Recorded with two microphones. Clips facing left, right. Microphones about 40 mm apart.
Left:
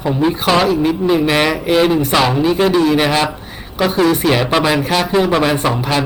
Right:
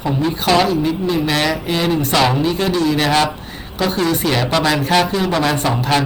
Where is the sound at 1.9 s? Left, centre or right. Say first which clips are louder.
Left 2 dB; centre.